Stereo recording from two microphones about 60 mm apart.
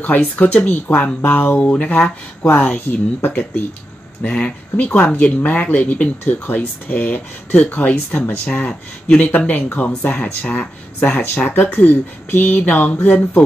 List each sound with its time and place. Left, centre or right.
0.0 s speech: left
4.2 s speech: centre